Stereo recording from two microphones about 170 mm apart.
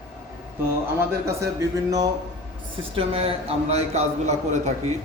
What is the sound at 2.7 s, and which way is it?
A man's voice, 35° right (ahead or behind).